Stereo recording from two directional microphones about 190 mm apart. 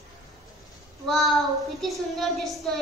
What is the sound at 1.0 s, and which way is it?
A woman's voice, centre (ahead or behind).